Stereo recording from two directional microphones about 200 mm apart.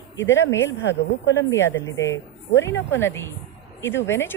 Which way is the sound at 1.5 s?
10° left (ahead or behind).